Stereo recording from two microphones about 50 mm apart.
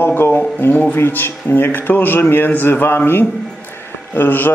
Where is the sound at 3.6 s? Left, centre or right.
Left.